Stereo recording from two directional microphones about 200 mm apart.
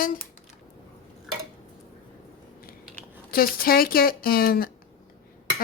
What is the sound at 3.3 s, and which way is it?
Speech, 45° left (ahead or behind).